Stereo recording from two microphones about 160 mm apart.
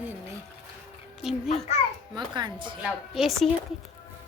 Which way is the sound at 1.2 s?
Centre (ahead or behind).